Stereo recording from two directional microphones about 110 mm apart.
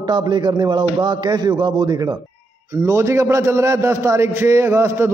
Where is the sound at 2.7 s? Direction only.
25° right (ahead or behind).